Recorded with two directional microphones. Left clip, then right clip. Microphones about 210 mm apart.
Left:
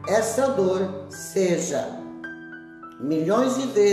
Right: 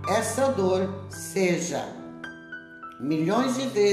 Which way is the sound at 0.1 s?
25° right (ahead or behind).